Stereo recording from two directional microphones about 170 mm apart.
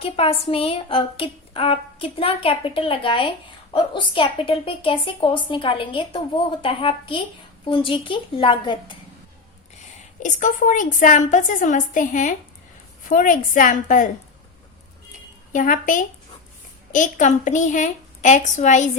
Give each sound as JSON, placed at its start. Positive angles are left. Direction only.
{"t": 0.0, "sound": "a woman's voice", "side_deg": 35}
{"t": 10.2, "sound": "a woman's voice", "side_deg": 50}
{"t": 15.5, "sound": "a woman's voice", "side_deg": 50}